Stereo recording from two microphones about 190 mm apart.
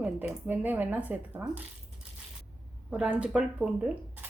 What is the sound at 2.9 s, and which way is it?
Speech, 5° right (ahead or behind).